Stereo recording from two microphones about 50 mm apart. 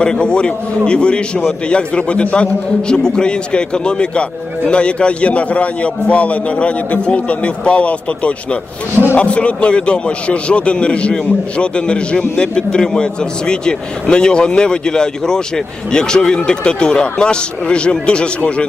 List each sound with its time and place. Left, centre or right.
0.0 s a man's voice: centre